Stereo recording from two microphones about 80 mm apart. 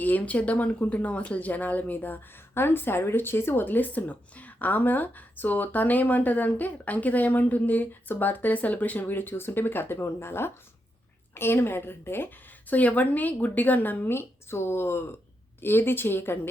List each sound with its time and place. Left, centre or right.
0.0 s speech: left